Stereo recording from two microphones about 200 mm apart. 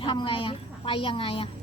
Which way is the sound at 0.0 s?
25° left (ahead or behind).